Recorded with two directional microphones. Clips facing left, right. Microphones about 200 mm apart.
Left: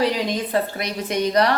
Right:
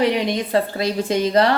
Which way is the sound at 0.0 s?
20° right (ahead or behind).